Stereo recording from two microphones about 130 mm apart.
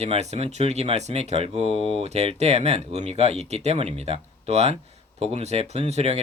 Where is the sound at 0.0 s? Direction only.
55° right (ahead or behind).